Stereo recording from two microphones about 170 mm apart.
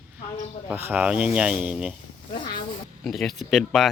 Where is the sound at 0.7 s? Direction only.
10° right (ahead or behind).